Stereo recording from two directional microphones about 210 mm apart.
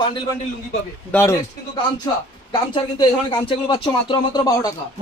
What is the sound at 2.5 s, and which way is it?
A man's voice, 20° left (ahead or behind).